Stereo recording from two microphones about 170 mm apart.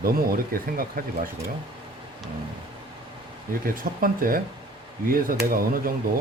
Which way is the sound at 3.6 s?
55° right (ahead or behind).